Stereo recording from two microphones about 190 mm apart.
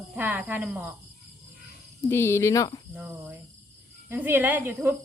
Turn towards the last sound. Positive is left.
turn(degrees=-10)  # may be behind; listen again after turning